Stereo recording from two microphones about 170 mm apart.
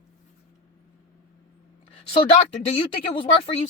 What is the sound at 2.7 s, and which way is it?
Speech, 30° left (ahead or behind).